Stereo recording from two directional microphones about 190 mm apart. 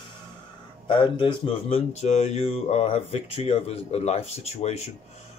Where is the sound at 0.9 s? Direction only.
25° left (ahead or behind).